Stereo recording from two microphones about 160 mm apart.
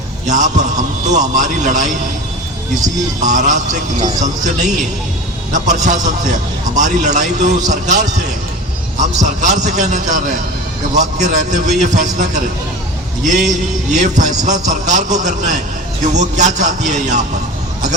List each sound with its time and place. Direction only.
0.3 s a man's voice: 50° right (ahead or behind)
3.2 s a man's voice: 50° right (ahead or behind)
5.5 s a man's voice: 50° right (ahead or behind)